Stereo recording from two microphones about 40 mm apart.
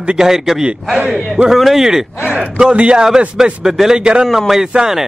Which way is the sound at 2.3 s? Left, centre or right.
Right.